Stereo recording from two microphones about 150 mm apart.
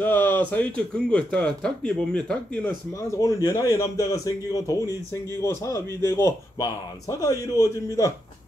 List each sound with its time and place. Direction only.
0.0 s a man's voice: 15° left (ahead or behind)